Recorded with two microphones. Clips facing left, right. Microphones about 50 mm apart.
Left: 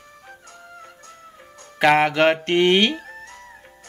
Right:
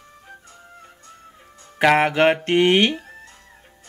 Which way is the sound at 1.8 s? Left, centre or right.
Centre.